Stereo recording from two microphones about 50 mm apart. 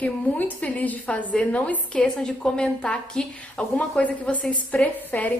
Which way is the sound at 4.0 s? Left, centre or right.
Left.